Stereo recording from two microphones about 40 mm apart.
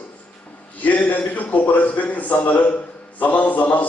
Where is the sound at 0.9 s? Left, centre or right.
Left.